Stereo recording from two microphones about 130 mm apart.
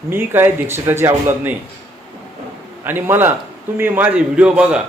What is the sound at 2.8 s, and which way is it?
Speech, 15° right (ahead or behind).